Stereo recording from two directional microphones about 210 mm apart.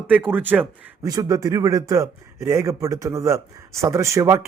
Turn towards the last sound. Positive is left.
turn(degrees=-15)  # may be behind; listen again after turning